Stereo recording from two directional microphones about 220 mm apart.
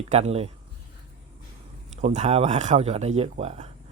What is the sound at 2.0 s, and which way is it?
Speech, 30° right (ahead or behind).